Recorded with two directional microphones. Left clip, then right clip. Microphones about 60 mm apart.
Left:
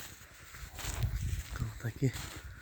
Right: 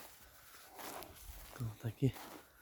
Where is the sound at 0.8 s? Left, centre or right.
Right.